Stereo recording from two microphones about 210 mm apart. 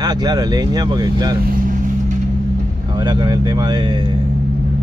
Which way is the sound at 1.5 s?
40° right (ahead or behind).